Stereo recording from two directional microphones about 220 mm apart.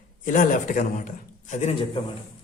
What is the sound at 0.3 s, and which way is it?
A man's voice, 35° left (ahead or behind).